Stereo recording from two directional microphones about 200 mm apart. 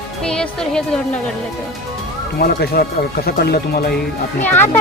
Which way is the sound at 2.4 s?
50° left (ahead or behind).